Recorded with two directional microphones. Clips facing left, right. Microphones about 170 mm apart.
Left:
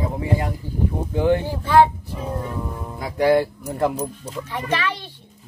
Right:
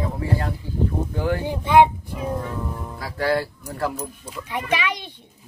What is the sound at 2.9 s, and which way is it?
Speech, 20° left (ahead or behind).